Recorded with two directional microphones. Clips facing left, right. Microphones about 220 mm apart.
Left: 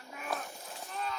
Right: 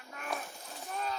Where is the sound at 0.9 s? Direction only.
45° right (ahead or behind).